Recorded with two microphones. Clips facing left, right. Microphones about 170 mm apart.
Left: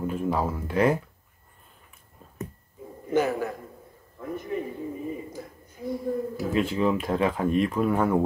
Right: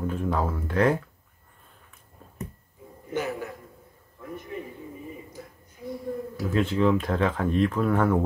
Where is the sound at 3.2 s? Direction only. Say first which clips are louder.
Left 6 dB; 45° left (ahead or behind).